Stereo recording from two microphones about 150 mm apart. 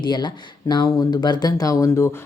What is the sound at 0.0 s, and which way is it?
Speech, 30° left (ahead or behind).